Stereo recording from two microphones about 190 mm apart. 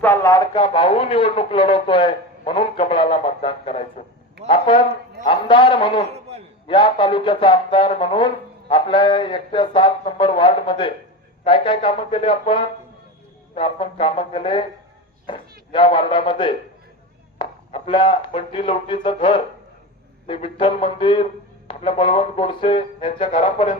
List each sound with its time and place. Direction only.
0.0 s speech: 15° left (ahead or behind); by 4.0 s 30° left (ahead or behind)
4.4 s a sound: 25° left (ahead or behind)
5.2 s speech: 25° left (ahead or behind)